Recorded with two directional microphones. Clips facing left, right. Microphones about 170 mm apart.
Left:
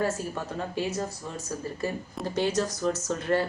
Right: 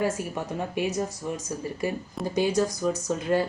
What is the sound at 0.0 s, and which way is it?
Speech, 15° right (ahead or behind).